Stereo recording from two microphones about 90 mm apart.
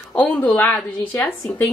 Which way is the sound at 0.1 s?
15° left (ahead or behind).